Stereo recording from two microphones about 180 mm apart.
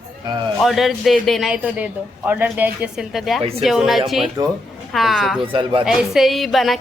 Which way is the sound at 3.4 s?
35° right (ahead or behind).